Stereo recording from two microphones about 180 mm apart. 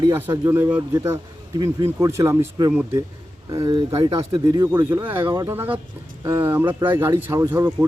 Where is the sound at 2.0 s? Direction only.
15° right (ahead or behind).